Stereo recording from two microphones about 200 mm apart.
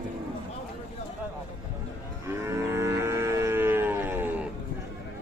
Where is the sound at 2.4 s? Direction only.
15° right (ahead or behind).